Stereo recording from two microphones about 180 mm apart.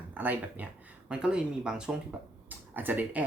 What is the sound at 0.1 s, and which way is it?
Speech, 10° right (ahead or behind).